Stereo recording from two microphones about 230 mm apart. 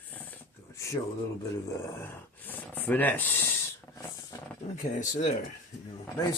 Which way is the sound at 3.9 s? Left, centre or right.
Centre.